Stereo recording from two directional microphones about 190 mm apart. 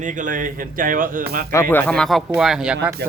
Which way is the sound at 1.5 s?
10° left (ahead or behind).